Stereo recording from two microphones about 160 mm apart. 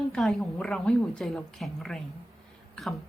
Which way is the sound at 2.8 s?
5° left (ahead or behind).